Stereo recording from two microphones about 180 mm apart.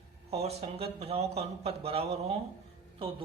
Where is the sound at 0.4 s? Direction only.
35° right (ahead or behind).